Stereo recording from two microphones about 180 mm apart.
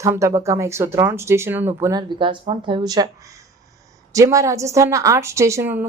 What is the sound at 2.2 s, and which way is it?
Speech, 25° right (ahead or behind).